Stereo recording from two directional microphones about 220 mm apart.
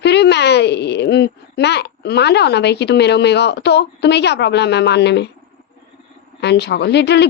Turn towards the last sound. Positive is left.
turn(degrees=50)  # may be behind; listen again after turning